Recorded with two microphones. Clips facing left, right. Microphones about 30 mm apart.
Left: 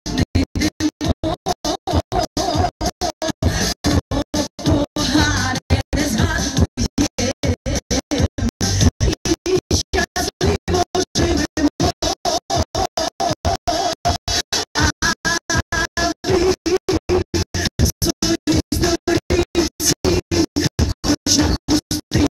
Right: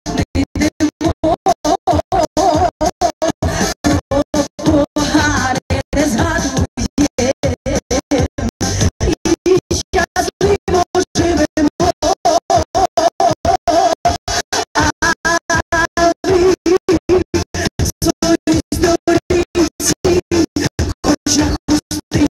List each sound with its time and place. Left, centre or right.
0.0 s music: centre
1.4 s a sound: left
2.1 s music: left; by 9.6 s centre
9.6 s music: centre